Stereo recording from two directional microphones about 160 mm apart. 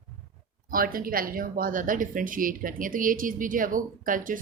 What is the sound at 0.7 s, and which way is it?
A woman's voice, 65° right (ahead or behind).